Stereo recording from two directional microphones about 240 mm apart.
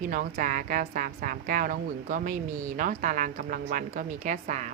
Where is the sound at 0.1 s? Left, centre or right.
Right.